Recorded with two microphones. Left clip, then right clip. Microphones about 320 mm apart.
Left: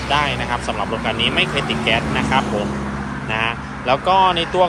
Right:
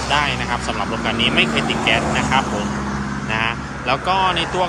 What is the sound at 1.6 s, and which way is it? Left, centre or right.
Speech, right.